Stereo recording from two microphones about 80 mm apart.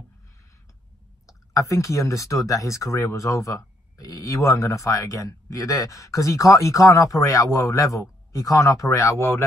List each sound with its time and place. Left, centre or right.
1.2 s speech: left